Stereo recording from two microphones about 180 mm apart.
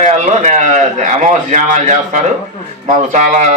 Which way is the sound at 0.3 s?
40° right (ahead or behind).